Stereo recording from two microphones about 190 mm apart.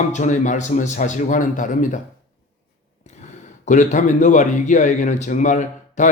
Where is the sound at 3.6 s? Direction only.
40° left (ahead or behind).